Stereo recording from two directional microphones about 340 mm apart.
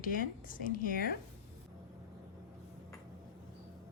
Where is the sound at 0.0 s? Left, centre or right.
Left.